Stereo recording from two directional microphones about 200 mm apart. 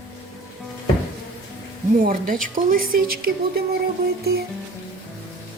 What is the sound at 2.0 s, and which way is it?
A woman's voice, 45° right (ahead or behind).